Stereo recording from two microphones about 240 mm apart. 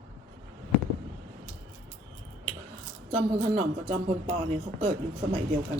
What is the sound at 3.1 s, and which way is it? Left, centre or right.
Speech, right.